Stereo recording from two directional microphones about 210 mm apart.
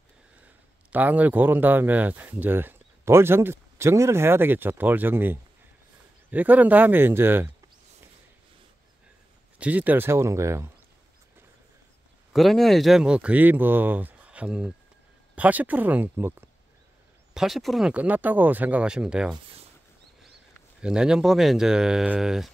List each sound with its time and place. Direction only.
0.9 s speech: 10° right (ahead or behind)
9.6 s speech: 5° right (ahead or behind)
12.3 s speech: centre (ahead or behind)
19.3 s speech: 30° right (ahead or behind)
20.8 s speech: 5° right (ahead or behind)